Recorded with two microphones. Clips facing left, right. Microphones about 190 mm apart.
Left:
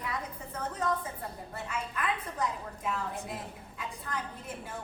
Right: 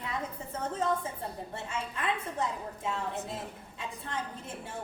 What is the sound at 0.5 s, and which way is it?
A woman's voice, 25° right (ahead or behind).